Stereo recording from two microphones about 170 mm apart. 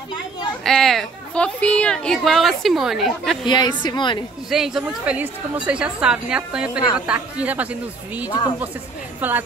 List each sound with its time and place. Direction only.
0.7 s speech: centre (ahead or behind)
3.4 s a woman's voice: 25° left (ahead or behind)
4.5 s a woman's voice: 5° right (ahead or behind)